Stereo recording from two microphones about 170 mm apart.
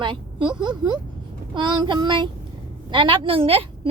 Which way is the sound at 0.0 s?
30° right (ahead or behind).